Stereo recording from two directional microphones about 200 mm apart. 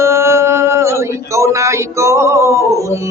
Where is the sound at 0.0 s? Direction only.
15° right (ahead or behind).